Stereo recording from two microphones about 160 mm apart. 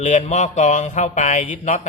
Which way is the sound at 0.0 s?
50° left (ahead or behind).